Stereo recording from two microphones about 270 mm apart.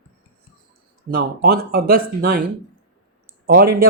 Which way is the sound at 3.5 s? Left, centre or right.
Right.